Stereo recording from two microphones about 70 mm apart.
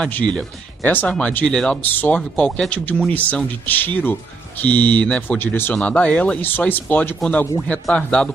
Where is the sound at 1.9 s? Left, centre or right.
Left.